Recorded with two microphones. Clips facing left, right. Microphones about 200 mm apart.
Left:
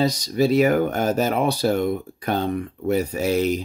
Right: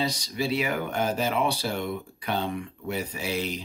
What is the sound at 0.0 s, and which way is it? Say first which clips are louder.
Speech: left 9 dB; 40° left (ahead or behind).